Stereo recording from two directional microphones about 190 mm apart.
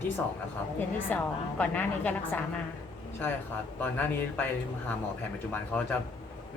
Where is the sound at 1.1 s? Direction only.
5° left (ahead or behind).